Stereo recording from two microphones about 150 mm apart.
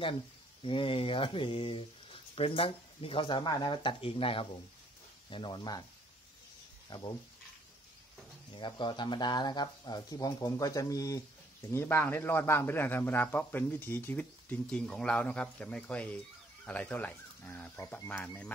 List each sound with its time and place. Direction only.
0.6 s speech: 35° left (ahead or behind)
6.9 s speech: 30° left (ahead or behind)
8.5 s a man's voice: 30° left (ahead or behind); by 18.5 s 10° left (ahead or behind)